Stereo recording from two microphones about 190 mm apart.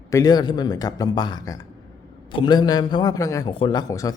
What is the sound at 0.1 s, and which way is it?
A man's voice, 20° left (ahead or behind).